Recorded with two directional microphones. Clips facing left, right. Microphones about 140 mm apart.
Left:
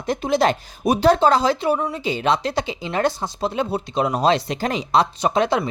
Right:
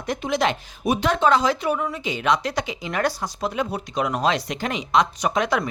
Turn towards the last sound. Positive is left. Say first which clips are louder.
# left 3 dB
turn(degrees=30)  # may be behind; listen again after turning